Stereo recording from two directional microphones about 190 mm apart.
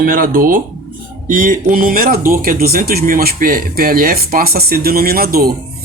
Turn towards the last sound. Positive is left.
turn(degrees=-55)  # may be behind; listen again after turning